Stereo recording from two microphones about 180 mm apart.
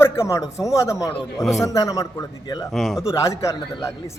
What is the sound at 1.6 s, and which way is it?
A man's voice, 20° left (ahead or behind).